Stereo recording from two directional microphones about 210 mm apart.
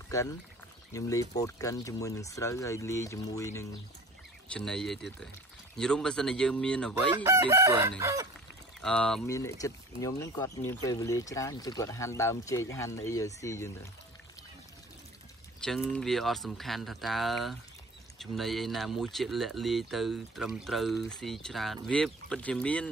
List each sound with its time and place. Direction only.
0.1 s speech: 15° left (ahead or behind)
4.5 s speech: 5° left (ahead or behind)
7.1 s chicken: 20° right (ahead or behind)
8.8 s speech: 5° left (ahead or behind)
9.3 s speech: 15° left (ahead or behind)
15.6 s speech: centre (ahead or behind)